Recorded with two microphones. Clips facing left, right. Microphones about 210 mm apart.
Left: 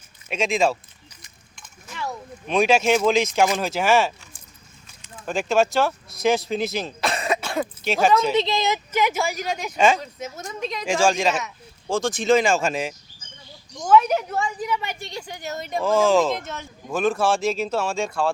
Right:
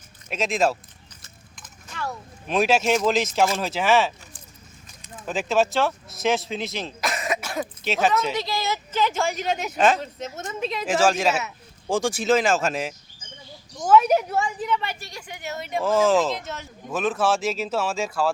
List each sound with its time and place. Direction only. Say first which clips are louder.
0.3 s speech: left 1 dB; centre (ahead or behind)
1.9 s a sound: left 1 dB; 15° left (ahead or behind)
2.5 s speech: left 2 dB; 5° right (ahead or behind)
7.0 s cough: left 2 dB; 30° left (ahead or behind)
7.9 s speech: left 3 dB; centre (ahead or behind)
8.4 s speech: left 5 dB; 20° left (ahead or behind)
9.2 s speech: right 1 dB; centre (ahead or behind)
15.3 s speech: even; 40° left (ahead or behind)
15.8 s speech: left 1 dB; 5° right (ahead or behind)